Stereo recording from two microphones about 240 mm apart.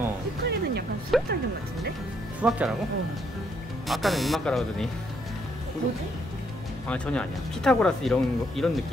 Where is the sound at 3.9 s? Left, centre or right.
Centre.